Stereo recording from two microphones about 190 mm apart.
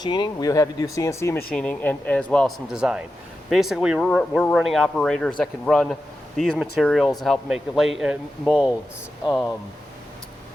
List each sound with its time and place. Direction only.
0.0 s speech: 20° left (ahead or behind); by 8.7 s 5° right (ahead or behind)